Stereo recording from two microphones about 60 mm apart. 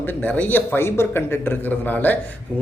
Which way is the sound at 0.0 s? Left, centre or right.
Left.